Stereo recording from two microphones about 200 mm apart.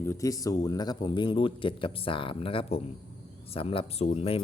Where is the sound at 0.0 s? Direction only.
15° left (ahead or behind).